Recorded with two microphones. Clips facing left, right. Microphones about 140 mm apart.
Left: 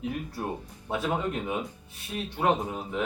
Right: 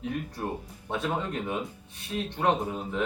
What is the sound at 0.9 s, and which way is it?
Speech, 5° left (ahead or behind).